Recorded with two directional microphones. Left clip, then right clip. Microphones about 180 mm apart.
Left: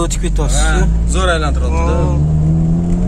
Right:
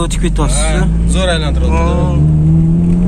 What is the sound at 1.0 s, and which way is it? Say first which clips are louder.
Speech: even; 75° left (ahead or behind).